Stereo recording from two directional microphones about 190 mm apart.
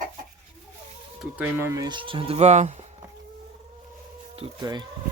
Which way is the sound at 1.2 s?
10° right (ahead or behind).